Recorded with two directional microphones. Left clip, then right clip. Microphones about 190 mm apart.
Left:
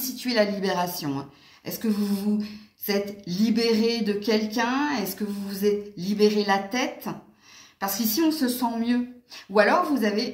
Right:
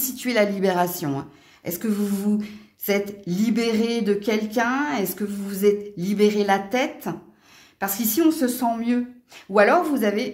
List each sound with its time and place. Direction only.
0.0 s a woman's voice: 45° right (ahead or behind)
1.8 s a sound: 45° right (ahead or behind)
7.8 s speech: 45° right (ahead or behind)